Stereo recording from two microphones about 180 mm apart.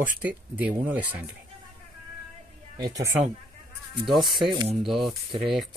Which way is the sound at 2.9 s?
15° right (ahead or behind).